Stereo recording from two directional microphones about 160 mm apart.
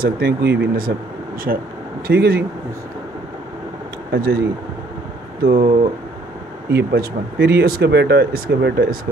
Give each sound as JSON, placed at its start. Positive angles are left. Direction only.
{"t": 0.0, "sound": "speech", "side_deg": -80}
{"t": 1.5, "sound": "speech", "side_deg": -65}
{"t": 4.1, "sound": "speech", "side_deg": -75}
{"t": 5.4, "sound": "speech", "side_deg": -70}
{"t": 6.7, "sound": "speech", "side_deg": -90}